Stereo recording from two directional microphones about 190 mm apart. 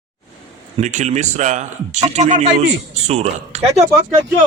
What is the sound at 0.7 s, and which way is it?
Speech, 40° right (ahead or behind).